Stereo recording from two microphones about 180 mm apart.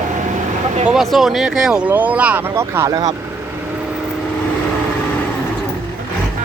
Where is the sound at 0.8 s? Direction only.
Centre (ahead or behind); by 3.1 s 20° right (ahead or behind).